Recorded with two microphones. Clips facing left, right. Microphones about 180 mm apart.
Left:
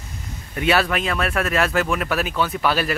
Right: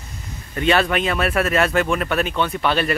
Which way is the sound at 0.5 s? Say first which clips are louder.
Right 2 dB; 5° left (ahead or behind).